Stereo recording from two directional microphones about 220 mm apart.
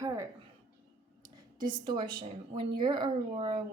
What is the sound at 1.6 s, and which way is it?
A woman's voice, 20° right (ahead or behind).